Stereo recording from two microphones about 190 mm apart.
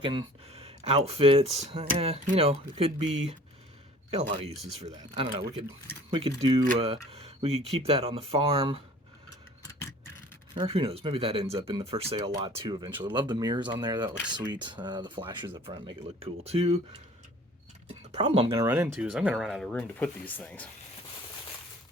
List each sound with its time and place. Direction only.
0.0 s speech: 25° right (ahead or behind)
10.5 s speech: 25° right (ahead or behind)
17.8 s a sound: 35° right (ahead or behind)
18.5 s speech: 15° right (ahead or behind); by 20.7 s 10° left (ahead or behind)